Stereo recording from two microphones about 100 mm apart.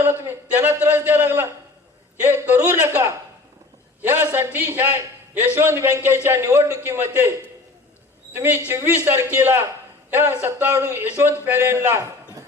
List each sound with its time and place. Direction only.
0.0 s a man's voice: 25° right (ahead or behind)
8.4 s a man's voice: 20° right (ahead or behind)